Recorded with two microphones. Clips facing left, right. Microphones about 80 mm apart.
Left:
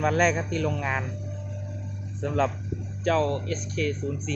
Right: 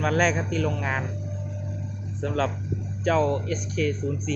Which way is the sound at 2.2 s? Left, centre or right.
Centre.